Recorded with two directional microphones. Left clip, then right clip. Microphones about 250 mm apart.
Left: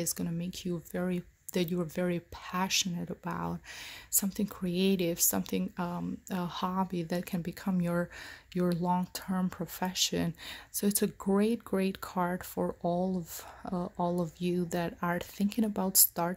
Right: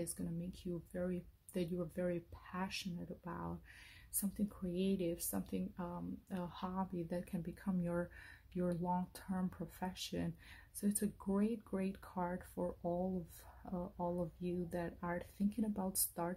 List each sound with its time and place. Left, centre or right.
0.0 s speech: left